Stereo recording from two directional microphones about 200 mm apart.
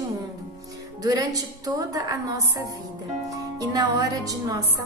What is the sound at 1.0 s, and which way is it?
A woman's voice, 15° right (ahead or behind).